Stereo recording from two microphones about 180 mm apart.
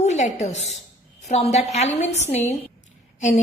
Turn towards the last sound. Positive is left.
turn(degrees=40)  # may be behind; listen again after turning